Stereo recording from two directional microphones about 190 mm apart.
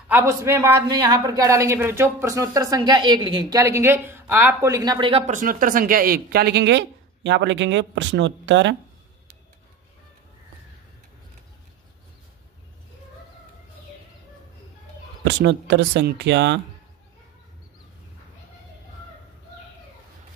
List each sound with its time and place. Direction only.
0.1 s a woman's voice: 15° right (ahead or behind)
5.2 s speech: 45° right (ahead or behind); by 8.7 s 75° right (ahead or behind)
15.2 s speech: 65° right (ahead or behind)